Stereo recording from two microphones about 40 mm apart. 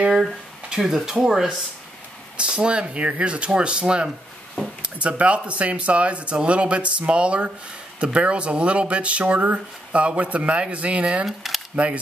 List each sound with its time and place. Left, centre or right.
0.1 s speech: centre
2.3 s speech: right
11.2 s speech: centre
11.7 s speech: right